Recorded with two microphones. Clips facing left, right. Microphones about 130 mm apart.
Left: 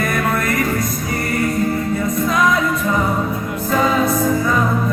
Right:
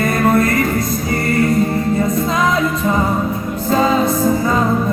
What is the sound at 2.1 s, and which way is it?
Music, 25° right (ahead or behind).